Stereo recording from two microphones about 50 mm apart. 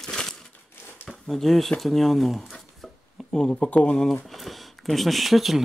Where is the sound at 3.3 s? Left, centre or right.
Centre.